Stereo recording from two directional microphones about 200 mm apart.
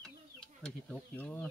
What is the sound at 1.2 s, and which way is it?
Speech, 5° left (ahead or behind).